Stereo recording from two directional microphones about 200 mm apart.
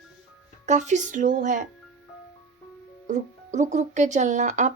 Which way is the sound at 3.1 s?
35° right (ahead or behind).